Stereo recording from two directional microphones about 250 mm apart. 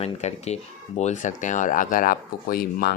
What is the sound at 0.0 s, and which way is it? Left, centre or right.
Speech, left.